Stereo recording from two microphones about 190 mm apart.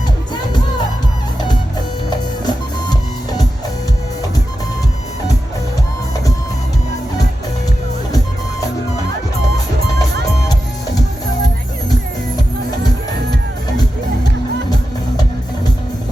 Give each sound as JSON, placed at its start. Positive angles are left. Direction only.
{"t": 2.0, "sound": "music", "side_deg": 20}